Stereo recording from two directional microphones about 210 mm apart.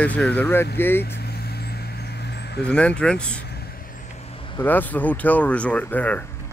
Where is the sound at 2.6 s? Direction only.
5° left (ahead or behind).